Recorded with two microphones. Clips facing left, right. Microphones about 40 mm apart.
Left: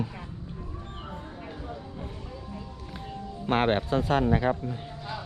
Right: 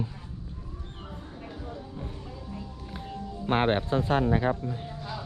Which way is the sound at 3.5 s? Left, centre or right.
Left.